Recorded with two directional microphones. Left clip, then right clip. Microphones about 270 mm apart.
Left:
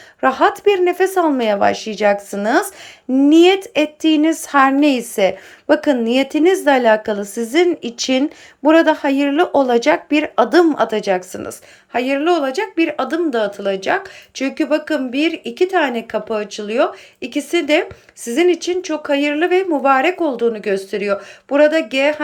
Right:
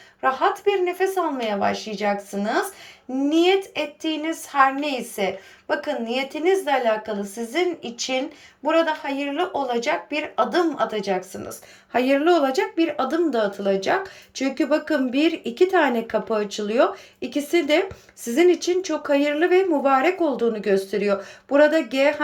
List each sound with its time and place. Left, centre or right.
0.2 s a woman's voice: centre